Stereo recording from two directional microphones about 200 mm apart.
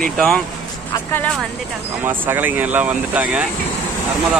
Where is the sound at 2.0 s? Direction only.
10° right (ahead or behind).